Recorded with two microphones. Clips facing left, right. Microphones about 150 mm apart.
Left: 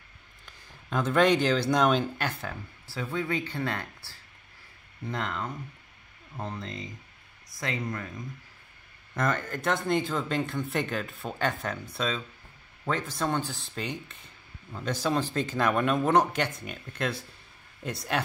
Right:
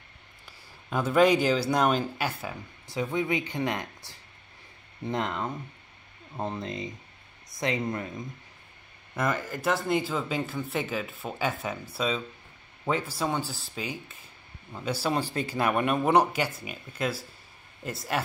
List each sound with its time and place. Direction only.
0.5 s speech: 5° right (ahead or behind)
9.1 s speech: 5° right (ahead or behind)